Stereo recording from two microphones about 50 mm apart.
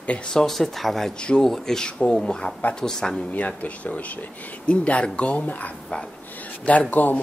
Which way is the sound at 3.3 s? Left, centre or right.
Left.